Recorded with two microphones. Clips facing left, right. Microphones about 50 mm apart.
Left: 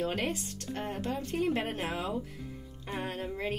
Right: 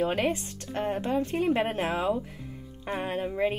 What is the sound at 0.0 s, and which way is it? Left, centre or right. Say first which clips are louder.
Speech: right 6 dB; right.